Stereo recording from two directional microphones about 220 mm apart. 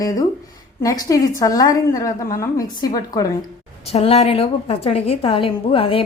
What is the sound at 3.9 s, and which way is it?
A woman's voice, 25° left (ahead or behind).